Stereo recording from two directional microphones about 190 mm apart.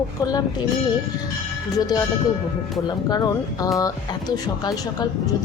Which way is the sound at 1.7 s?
20° left (ahead or behind).